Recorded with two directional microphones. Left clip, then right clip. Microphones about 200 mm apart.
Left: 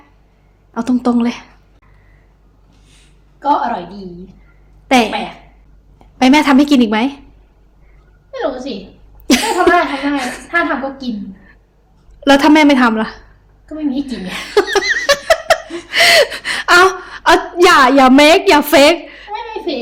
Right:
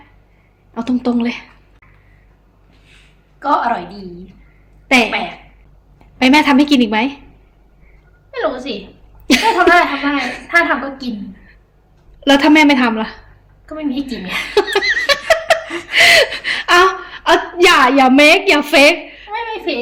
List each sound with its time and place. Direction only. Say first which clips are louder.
0.7 s a woman's voice: left 2 dB; 15° left (ahead or behind)
4.9 s a woman's voice: even; 15° left (ahead or behind)
6.1 s a woman's voice: left 1 dB; 15° left (ahead or behind)
9.2 s cough: right 1 dB; 15° left (ahead or behind)
9.6 s a woman's voice: right 1 dB; 5° left (ahead or behind)
9.9 s a woman's voice: even; 15° left (ahead or behind)
10.5 s a woman's voice: right 2 dB; 5° left (ahead or behind)
12.2 s a woman's voice: left 1 dB; 15° left (ahead or behind)
13.7 s a woman's voice: left 2 dB; 5° left (ahead or behind)
14.5 s laughter: left 2 dB; 15° left (ahead or behind)
15.9 s gasp: even; 15° left (ahead or behind)
19.3 s a sound: right 1 dB; 5° left (ahead or behind)